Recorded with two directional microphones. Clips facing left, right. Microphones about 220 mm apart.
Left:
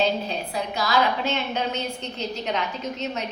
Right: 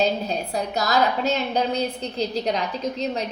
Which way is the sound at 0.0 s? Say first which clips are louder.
Right 2 dB; 40° right (ahead or behind).